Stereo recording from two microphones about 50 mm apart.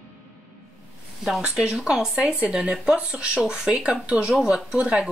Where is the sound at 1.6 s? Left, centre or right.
Centre.